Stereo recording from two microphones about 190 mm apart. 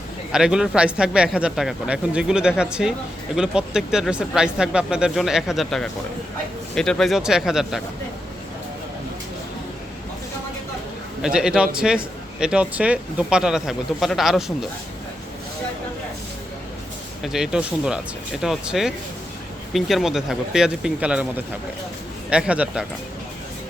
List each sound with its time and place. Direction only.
0.3 s speech: 5° right (ahead or behind)
11.2 s speech: 5° right (ahead or behind)
17.2 s speech: 5° right (ahead or behind)